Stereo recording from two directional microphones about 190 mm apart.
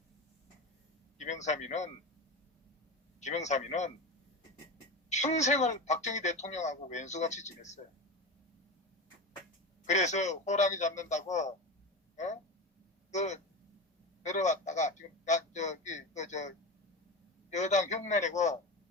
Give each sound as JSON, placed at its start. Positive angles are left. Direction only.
{"t": 1.2, "sound": "speech", "side_deg": 40}
{"t": 3.2, "sound": "speech", "side_deg": 40}
{"t": 5.0, "sound": "speech", "side_deg": 40}
{"t": 9.8, "sound": "speech", "side_deg": 40}
{"t": 17.5, "sound": "speech", "side_deg": 40}